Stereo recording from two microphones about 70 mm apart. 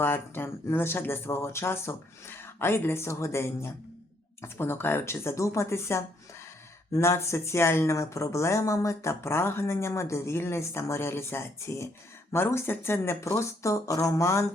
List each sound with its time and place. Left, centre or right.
0.0 s speech: left